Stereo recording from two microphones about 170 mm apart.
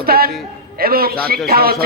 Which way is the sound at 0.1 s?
65° right (ahead or behind).